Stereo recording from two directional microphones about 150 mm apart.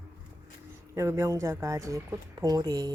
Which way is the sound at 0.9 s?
20° right (ahead or behind).